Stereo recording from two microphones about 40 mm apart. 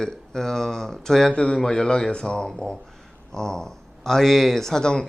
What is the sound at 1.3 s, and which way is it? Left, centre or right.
Speech, left.